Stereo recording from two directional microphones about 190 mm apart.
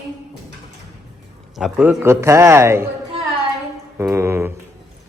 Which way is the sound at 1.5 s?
5° right (ahead or behind).